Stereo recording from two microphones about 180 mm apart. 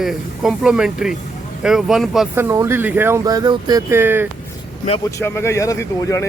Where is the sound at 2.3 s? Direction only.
15° right (ahead or behind).